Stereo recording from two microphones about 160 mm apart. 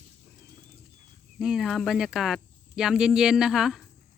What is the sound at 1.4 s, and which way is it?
Speech, 5° right (ahead or behind).